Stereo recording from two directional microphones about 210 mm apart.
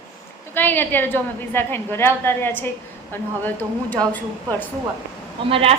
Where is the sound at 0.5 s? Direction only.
10° left (ahead or behind).